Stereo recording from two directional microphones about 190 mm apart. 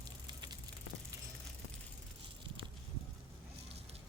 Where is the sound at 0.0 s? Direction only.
20° right (ahead or behind).